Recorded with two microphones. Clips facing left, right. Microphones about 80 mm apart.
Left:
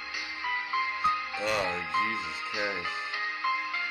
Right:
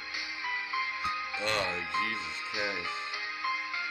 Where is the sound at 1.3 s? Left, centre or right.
Centre.